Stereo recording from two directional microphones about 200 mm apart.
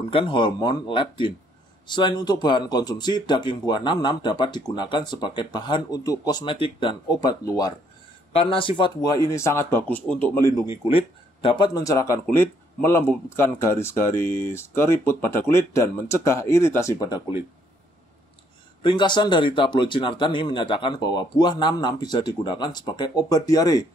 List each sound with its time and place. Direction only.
0.1 s speech: 25° left (ahead or behind)
10.9 s speech: 25° left (ahead or behind)
18.8 s speech: 25° left (ahead or behind)